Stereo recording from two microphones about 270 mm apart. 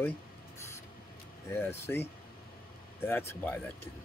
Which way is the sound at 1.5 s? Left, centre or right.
Centre.